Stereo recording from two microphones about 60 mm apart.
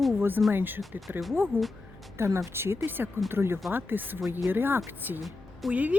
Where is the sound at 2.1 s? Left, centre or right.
Right.